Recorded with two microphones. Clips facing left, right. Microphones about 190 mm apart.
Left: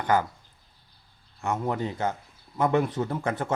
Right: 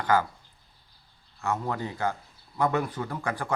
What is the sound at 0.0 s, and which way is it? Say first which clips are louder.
Speech: even; 20° left (ahead or behind).